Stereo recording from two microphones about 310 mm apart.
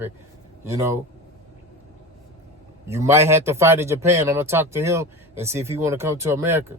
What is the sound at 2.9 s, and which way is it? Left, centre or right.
Speech, centre.